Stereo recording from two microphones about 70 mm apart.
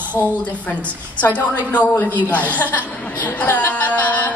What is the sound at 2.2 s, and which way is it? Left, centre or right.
A woman's voice, left.